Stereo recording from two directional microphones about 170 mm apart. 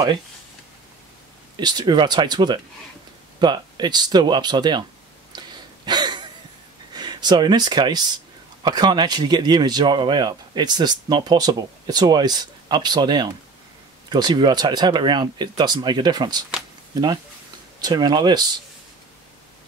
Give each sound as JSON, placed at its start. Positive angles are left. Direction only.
{"t": 1.6, "sound": "speech", "side_deg": -25}
{"t": 5.3, "sound": "a sound", "side_deg": -25}
{"t": 6.9, "sound": "speech", "side_deg": -25}
{"t": 17.7, "sound": "speech", "side_deg": -25}